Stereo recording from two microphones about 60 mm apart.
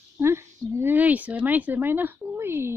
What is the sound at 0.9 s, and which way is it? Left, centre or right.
A woman's voice, right.